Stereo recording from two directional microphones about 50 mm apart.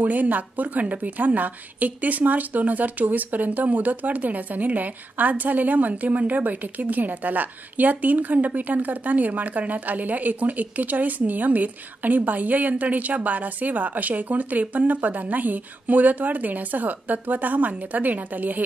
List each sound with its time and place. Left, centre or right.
0.0 s a woman's voice: right